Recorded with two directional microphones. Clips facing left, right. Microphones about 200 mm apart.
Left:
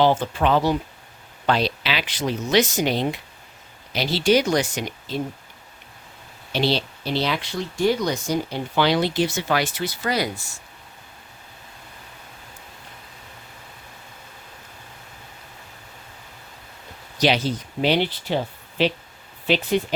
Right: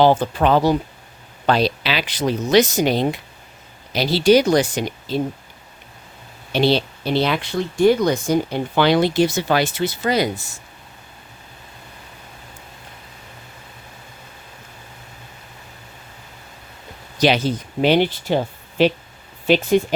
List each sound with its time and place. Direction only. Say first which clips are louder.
0.0 s speech: right 4 dB; 40° right (ahead or behind)
6.5 s speech: right 5 dB; 55° right (ahead or behind); by 10.6 s 20° right (ahead or behind)
17.2 s speech: right 3 dB; 50° right (ahead or behind)